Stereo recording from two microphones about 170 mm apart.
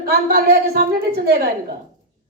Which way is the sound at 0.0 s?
65° right (ahead or behind).